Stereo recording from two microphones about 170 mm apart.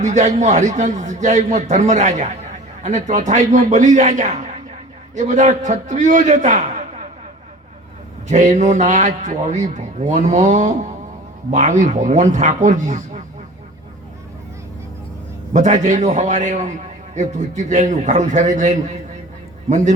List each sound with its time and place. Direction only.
0.0 s a man's voice: 45° right (ahead or behind)
8.3 s a man's voice: 45° right (ahead or behind)
15.5 s a man's voice: 45° right (ahead or behind)